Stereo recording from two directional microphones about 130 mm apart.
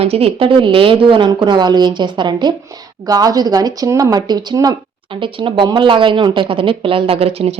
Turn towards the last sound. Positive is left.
turn(degrees=-50)  # may be behind; listen again after turning